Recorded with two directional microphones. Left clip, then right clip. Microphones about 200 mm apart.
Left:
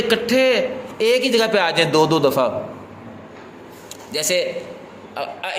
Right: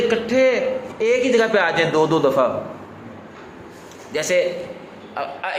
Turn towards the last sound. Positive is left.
turn(degrees=40)  # may be behind; listen again after turning